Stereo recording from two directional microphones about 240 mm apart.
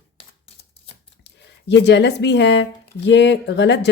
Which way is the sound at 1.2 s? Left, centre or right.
Left.